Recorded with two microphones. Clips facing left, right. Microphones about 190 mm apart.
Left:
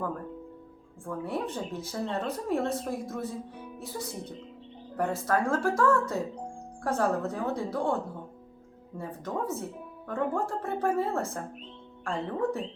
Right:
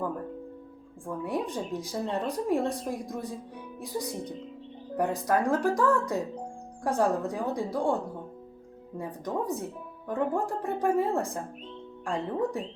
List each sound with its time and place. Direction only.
1.0 s speech: 15° right (ahead or behind)
9.0 s speech: 15° right (ahead or behind)